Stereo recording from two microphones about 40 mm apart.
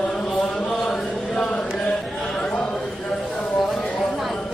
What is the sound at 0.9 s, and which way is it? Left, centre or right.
Chant, left.